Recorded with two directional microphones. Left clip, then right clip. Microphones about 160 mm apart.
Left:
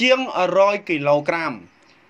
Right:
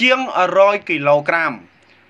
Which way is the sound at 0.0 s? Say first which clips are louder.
Right 3 dB; 50° left (ahead or behind).